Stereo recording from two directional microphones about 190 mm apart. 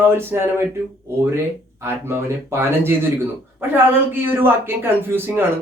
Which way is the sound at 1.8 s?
10° right (ahead or behind).